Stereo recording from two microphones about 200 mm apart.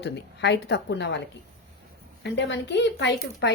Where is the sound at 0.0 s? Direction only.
60° left (ahead or behind).